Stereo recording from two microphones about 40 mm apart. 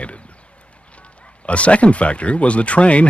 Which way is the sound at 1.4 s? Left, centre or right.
Left.